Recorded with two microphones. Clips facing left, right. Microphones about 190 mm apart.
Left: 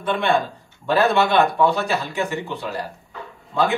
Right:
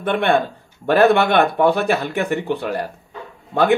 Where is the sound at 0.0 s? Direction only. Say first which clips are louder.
Right 3 dB; 55° right (ahead or behind).